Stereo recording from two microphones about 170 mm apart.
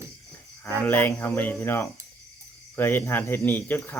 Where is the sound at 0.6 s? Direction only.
10° left (ahead or behind).